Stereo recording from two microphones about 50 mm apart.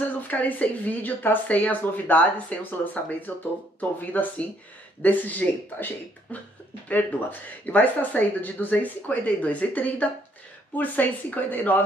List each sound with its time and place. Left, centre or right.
0.3 s speech: left